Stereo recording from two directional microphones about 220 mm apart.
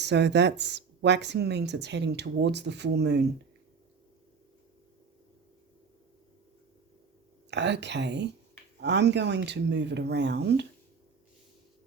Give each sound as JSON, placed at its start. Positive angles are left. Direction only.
{"t": 0.0, "sound": "speech", "side_deg": -50}
{"t": 7.5, "sound": "speech", "side_deg": -50}